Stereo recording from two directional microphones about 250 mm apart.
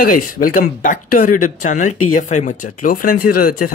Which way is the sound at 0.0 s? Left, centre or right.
Left.